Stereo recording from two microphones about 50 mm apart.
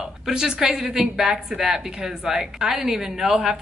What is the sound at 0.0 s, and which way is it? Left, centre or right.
Speech, centre.